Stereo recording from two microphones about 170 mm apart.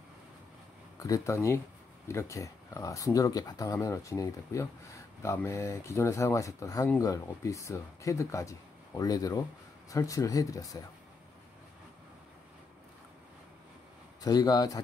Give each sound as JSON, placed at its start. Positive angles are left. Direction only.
{"t": 0.9, "sound": "speech", "side_deg": 20}
{"t": 14.2, "sound": "speech", "side_deg": 25}